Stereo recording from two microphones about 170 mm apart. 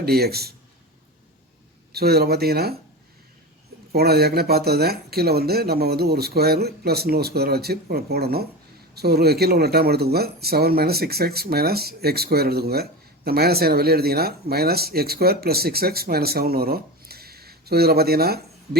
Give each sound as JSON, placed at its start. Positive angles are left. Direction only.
{"t": 0.0, "sound": "speech", "side_deg": -65}
{"t": 1.9, "sound": "speech", "side_deg": -65}
{"t": 3.9, "sound": "speech", "side_deg": -70}